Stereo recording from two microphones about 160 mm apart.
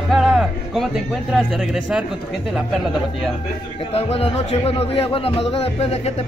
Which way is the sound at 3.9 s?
40° left (ahead or behind).